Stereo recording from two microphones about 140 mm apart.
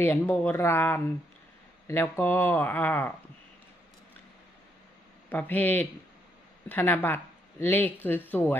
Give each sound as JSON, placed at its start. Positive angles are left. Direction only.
{"t": 0.0, "sound": "speech", "side_deg": 15}
{"t": 5.3, "sound": "speech", "side_deg": 10}